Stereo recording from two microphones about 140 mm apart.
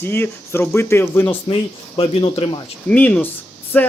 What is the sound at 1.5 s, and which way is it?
Speech, 40° left (ahead or behind).